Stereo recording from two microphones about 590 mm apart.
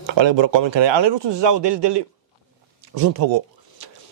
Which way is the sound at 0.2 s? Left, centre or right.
Right.